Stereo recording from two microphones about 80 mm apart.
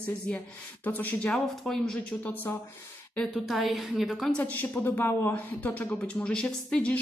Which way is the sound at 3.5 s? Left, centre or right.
Centre.